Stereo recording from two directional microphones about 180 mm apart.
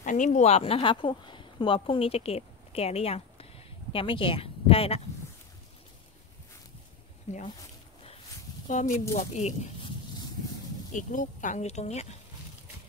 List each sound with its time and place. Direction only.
0.0 s speech: 45° left (ahead or behind)
7.3 s speech: 35° left (ahead or behind)
8.6 s speech: 45° left (ahead or behind)